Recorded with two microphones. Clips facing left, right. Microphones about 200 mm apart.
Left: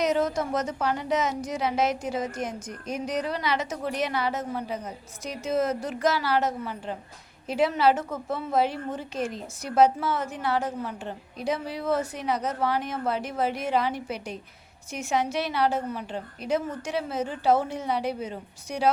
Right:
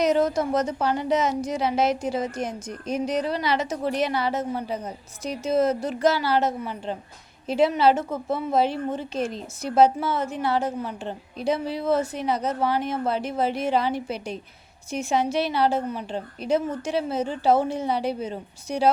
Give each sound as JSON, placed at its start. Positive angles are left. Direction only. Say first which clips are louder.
{"t": 0.0, "sound": "a woman's voice", "louder": "right 4 dB", "side_deg": -35}